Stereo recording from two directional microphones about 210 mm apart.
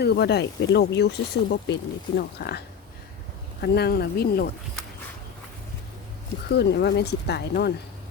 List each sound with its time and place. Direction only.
0.0 s speech: 50° left (ahead or behind)
6.5 s speech: 50° left (ahead or behind)